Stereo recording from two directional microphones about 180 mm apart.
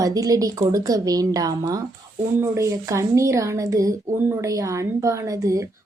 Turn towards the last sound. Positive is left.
turn(degrees=-20)  # may be behind; listen again after turning